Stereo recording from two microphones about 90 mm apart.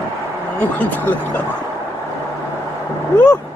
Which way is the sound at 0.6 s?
20° left (ahead or behind).